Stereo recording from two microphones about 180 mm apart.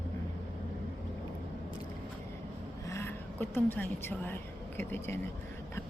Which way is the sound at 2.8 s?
15° left (ahead or behind).